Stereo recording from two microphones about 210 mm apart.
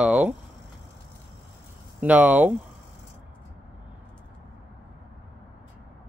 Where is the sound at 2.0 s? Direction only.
5° right (ahead or behind).